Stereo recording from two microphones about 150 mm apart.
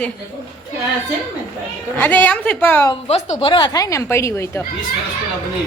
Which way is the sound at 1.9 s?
10° left (ahead or behind).